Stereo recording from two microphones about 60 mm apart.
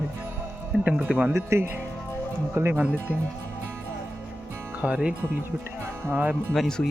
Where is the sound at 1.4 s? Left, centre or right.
Right.